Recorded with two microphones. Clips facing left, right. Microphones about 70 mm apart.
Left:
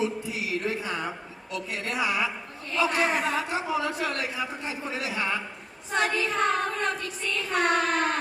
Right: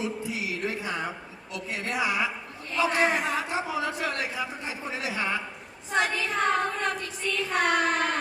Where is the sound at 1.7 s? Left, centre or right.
Right.